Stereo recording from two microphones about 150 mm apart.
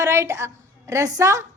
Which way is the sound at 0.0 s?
20° right (ahead or behind).